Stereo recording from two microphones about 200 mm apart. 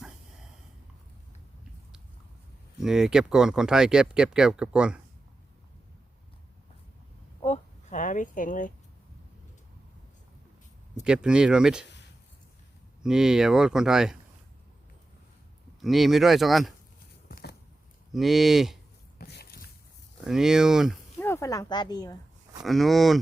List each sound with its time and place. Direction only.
2.8 s speech: 5° right (ahead or behind)
7.4 s a sound: 35° left (ahead or behind)
11.0 s speech: 5° right (ahead or behind)
13.0 s speech: 5° right (ahead or behind)
15.8 s speech: centre (ahead or behind)
17.2 s a sound: 50° left (ahead or behind)
18.1 s speech: centre (ahead or behind)
19.2 s a sound: 50° left (ahead or behind)
20.2 s speech: centre (ahead or behind)
21.2 s speech: 10° left (ahead or behind)
22.6 s speech: centre (ahead or behind)